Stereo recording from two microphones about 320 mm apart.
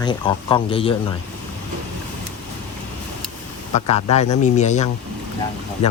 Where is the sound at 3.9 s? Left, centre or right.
Centre.